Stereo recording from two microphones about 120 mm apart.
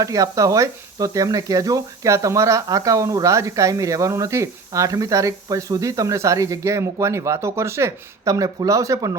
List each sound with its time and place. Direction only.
0.0 s speech: 30° right (ahead or behind)